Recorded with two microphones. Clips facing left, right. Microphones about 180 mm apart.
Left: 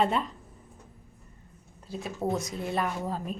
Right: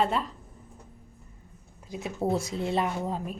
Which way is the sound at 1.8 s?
15° right (ahead or behind).